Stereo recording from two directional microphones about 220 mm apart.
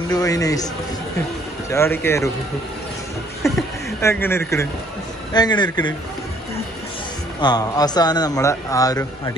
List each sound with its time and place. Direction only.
0.1 s speech: 15° left (ahead or behind)
1.7 s speech: 10° left (ahead or behind)
3.4 s speech: 15° left (ahead or behind)
7.3 s speech: 20° left (ahead or behind)